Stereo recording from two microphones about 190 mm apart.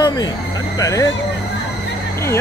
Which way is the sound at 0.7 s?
15° left (ahead or behind).